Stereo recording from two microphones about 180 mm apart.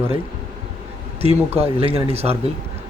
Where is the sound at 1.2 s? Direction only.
35° right (ahead or behind).